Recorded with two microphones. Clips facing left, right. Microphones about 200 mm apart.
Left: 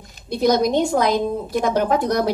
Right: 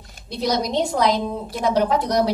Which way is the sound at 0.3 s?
50° left (ahead or behind).